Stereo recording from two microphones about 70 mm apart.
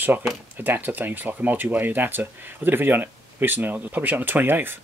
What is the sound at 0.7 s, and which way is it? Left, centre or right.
Speech, right.